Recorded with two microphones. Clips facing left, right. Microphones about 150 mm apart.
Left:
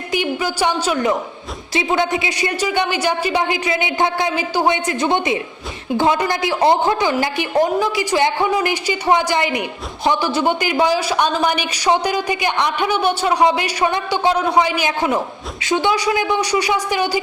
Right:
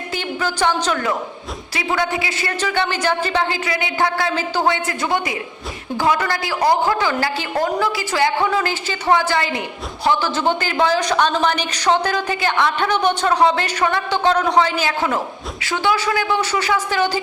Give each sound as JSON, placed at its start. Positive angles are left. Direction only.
{"t": 0.1, "sound": "speech", "side_deg": 15}
{"t": 1.7, "sound": "a man's voice", "side_deg": 20}